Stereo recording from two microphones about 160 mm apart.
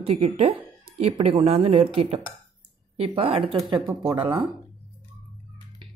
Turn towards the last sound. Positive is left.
turn(degrees=-30)  # may be behind; listen again after turning